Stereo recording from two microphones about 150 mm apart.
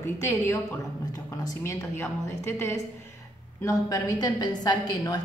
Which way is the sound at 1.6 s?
15° left (ahead or behind).